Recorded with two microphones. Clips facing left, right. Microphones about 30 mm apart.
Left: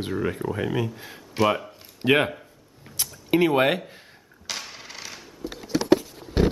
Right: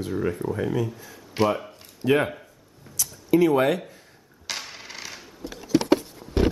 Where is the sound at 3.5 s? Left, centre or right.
Left.